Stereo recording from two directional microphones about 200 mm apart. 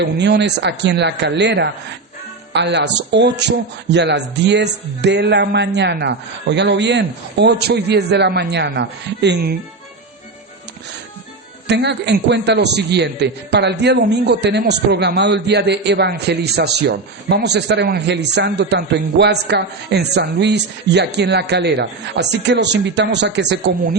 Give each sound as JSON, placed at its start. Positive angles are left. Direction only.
{"t": 0.0, "sound": "a man's voice", "side_deg": -60}
{"t": 11.7, "sound": "a man's voice", "side_deg": -60}